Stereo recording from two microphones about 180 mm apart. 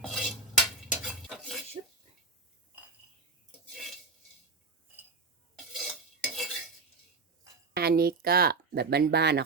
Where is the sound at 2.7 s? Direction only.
10° right (ahead or behind).